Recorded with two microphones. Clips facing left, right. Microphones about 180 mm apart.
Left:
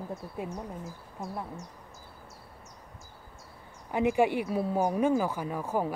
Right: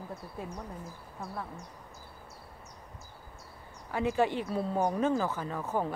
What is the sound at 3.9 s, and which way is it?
A woman's voice, 15° left (ahead or behind).